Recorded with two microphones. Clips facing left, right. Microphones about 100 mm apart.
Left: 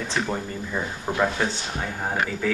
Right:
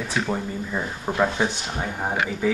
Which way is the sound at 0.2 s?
5° right (ahead or behind).